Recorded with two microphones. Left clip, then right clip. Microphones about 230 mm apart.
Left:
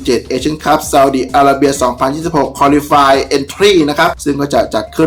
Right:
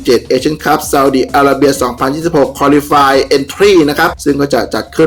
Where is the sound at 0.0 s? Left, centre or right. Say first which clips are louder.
Right 4 dB; centre.